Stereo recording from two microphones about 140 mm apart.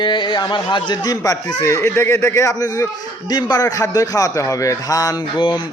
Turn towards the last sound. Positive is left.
turn(degrees=30)  # may be behind; listen again after turning